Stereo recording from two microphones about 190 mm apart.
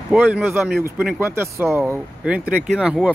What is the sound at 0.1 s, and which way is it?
Speech, centre (ahead or behind).